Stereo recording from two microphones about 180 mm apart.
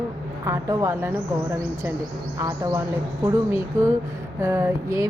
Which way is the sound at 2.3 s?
15° right (ahead or behind).